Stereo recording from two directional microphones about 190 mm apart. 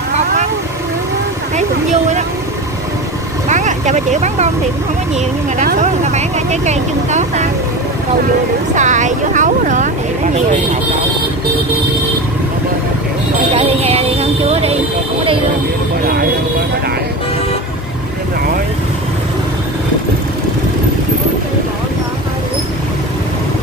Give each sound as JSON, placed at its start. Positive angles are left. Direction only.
{"t": 3.4, "sound": "vehicle", "side_deg": -40}
{"t": 5.8, "sound": "speech", "side_deg": -35}
{"t": 8.7, "sound": "speech", "side_deg": -40}
{"t": 13.6, "sound": "music", "side_deg": -30}